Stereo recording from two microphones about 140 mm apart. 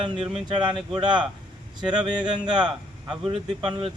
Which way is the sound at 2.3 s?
30° right (ahead or behind).